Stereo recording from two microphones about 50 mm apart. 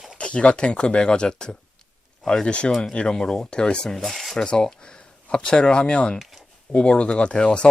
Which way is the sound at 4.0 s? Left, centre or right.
Centre.